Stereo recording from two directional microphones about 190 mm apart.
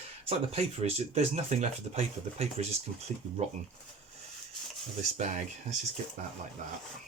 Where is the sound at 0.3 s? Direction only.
35° right (ahead or behind).